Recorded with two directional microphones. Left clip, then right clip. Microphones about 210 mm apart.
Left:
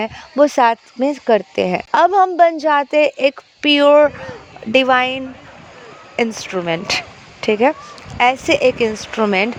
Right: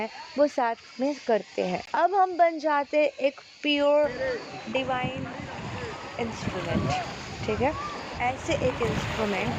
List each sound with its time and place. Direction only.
0.0 s speech: 50° left (ahead or behind)
6.1 s speech: 50° left (ahead or behind)